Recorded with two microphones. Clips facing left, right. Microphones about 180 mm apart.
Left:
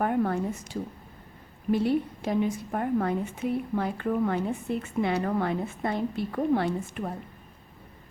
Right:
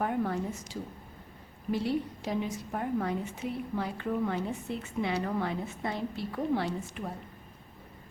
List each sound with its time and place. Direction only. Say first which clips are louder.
0.0 s a woman's voice: left 4 dB; 55° left (ahead or behind)